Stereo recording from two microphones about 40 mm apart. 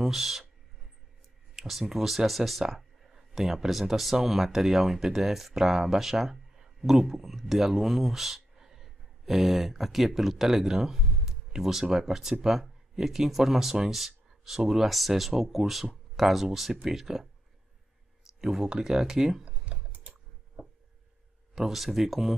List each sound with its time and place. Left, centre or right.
0.0 s speech: centre
1.5 s speech: centre
18.4 s speech: centre
19.4 s typing: right
19.9 s typing: right
21.5 s speech: centre